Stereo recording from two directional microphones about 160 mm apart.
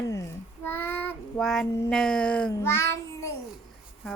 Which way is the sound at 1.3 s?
5° left (ahead or behind).